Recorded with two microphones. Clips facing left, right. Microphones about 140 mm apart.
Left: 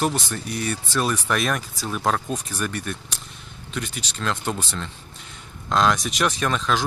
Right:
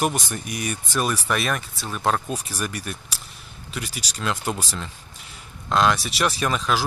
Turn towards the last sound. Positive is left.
turn(degrees=-5)  # may be behind; listen again after turning